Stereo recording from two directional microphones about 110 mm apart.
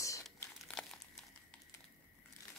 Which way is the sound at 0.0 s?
30° left (ahead or behind).